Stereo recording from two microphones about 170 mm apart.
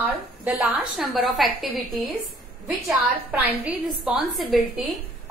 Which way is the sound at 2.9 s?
5° right (ahead or behind).